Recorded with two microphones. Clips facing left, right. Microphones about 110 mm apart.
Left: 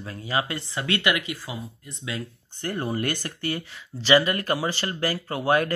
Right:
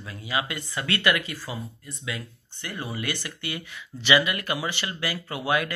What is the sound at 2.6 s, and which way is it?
Speech, 45° left (ahead or behind).